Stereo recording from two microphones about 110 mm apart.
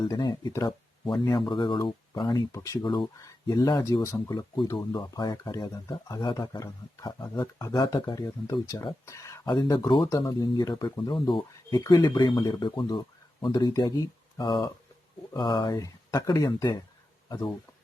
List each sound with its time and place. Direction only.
0.1 s a man's voice: 40° left (ahead or behind)
1.4 s a man's voice: 45° left (ahead or behind); by 9.4 s 30° left (ahead or behind)
9.6 s a man's voice: 45° left (ahead or behind)